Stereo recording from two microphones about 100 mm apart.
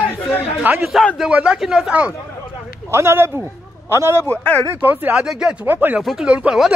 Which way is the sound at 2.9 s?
25° right (ahead or behind).